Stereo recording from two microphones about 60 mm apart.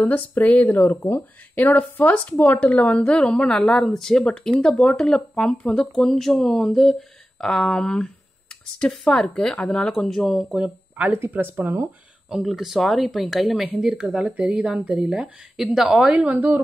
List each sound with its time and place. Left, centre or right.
0.1 s speech: left
2.6 s speech: left; by 10.4 s centre
11.1 s speech: right
12.3 s a woman's voice: centre
16.3 s speech: right